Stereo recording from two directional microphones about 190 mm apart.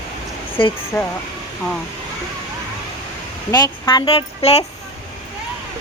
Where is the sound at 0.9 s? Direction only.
10° left (ahead or behind).